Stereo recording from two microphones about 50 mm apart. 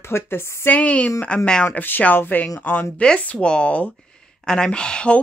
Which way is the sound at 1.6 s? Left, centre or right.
Left.